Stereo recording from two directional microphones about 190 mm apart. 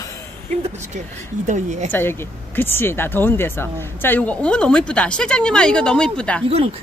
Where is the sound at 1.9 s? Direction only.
10° left (ahead or behind).